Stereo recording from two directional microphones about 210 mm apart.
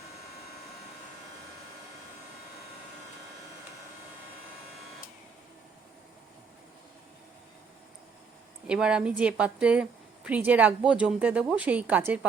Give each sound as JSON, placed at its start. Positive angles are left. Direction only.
{"t": 8.6, "sound": "speech", "side_deg": -5}